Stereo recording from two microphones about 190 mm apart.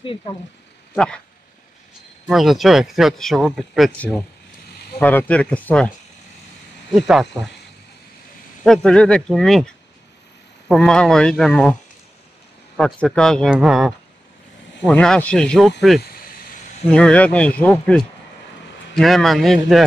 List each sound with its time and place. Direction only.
0.0 s speech: 25° left (ahead or behind)
0.9 s speech: 5° left (ahead or behind)
2.2 s speech: centre (ahead or behind)
6.9 s speech: centre (ahead or behind)
8.6 s speech: 5° left (ahead or behind)
12.7 s speech: 5° left (ahead or behind)
16.0 s a sound: 50° left (ahead or behind)
16.9 s speech: 5° left (ahead or behind)